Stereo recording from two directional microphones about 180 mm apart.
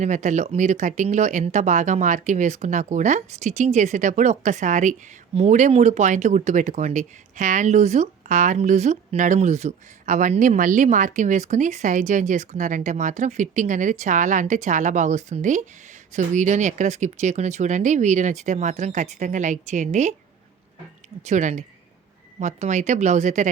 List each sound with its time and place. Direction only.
0.0 s speech: 40° right (ahead or behind)
21.2 s speech: 40° right (ahead or behind)